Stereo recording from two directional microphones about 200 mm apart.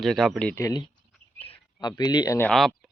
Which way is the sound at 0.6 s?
20° left (ahead or behind).